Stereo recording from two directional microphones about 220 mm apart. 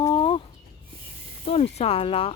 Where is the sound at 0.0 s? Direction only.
20° left (ahead or behind).